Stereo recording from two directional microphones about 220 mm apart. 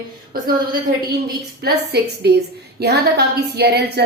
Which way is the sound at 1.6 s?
45° right (ahead or behind).